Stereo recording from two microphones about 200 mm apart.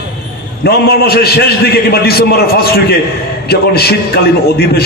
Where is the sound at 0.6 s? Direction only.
50° left (ahead or behind).